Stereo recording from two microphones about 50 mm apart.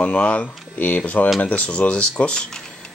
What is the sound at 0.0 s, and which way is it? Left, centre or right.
Speech, left.